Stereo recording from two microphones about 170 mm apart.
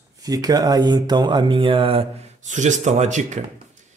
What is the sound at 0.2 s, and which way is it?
Speech, 20° right (ahead or behind).